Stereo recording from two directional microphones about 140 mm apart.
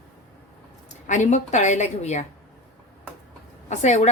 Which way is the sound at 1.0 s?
60° left (ahead or behind).